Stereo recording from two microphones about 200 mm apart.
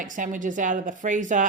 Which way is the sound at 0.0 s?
40° right (ahead or behind).